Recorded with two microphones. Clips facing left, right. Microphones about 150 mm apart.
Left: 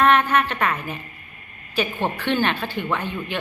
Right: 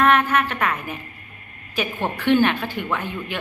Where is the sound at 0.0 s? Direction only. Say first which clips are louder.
Even; 5° right (ahead or behind).